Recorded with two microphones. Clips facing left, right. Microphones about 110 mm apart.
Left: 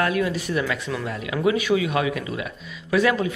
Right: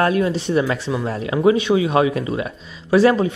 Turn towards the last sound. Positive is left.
turn(degrees=-30)  # may be behind; listen again after turning